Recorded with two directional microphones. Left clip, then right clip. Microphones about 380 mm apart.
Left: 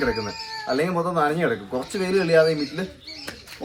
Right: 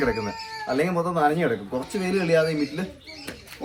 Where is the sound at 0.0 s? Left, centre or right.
Centre.